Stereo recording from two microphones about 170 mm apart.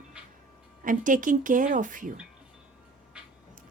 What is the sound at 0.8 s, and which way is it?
A woman's voice, 50° right (ahead or behind).